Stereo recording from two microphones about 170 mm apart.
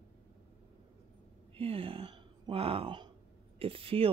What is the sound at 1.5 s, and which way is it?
Speech, 35° right (ahead or behind).